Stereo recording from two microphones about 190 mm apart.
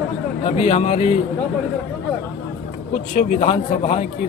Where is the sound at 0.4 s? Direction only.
35° left (ahead or behind).